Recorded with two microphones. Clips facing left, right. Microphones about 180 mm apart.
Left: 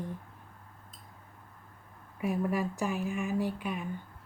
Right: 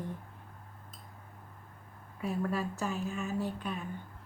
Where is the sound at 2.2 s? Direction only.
15° left (ahead or behind).